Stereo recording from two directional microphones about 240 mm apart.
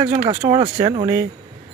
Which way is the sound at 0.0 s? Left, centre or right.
Right.